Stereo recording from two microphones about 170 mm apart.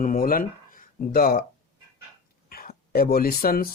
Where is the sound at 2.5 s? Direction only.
60° left (ahead or behind).